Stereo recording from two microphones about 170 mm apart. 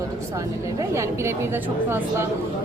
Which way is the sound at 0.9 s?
15° right (ahead or behind).